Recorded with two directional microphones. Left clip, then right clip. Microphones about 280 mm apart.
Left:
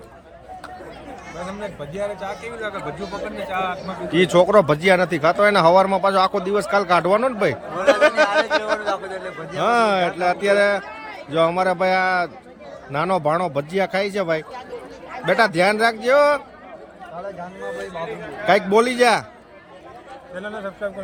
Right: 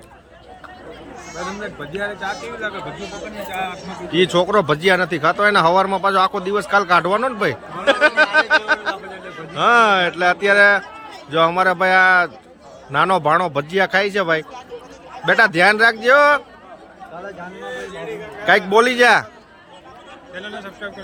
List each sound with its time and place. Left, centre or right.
1.6 s speech: left
3.5 s a man's voice: centre
18.7 s a man's voice: centre
20.3 s speech: left